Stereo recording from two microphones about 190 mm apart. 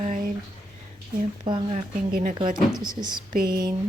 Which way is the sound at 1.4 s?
25° right (ahead or behind).